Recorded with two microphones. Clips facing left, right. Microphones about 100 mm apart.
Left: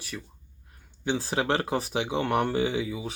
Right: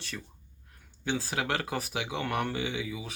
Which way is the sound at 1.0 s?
25° left (ahead or behind).